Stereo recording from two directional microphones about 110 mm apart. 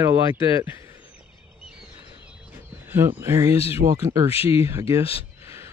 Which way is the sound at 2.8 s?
25° right (ahead or behind).